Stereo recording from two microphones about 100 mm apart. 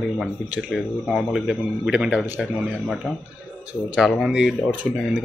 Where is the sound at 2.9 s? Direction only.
5° left (ahead or behind).